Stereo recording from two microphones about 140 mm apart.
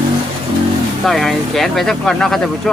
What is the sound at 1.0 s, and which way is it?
A man's voice, centre (ahead or behind).